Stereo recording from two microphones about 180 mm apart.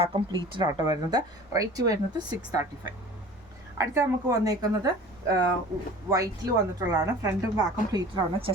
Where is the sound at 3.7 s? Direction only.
15° right (ahead or behind).